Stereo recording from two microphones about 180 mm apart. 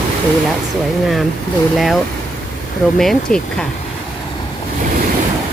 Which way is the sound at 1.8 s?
Centre (ahead or behind).